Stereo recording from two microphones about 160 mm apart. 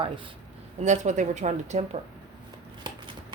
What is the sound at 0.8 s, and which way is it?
Speech, 50° right (ahead or behind).